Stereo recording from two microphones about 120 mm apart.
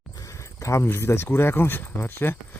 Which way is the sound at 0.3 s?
25° left (ahead or behind).